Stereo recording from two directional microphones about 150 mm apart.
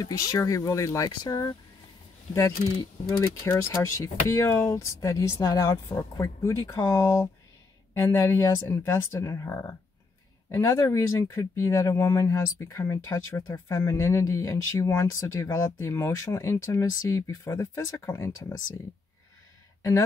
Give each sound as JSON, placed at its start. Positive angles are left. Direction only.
{"t": 0.0, "sound": "speech", "side_deg": 20}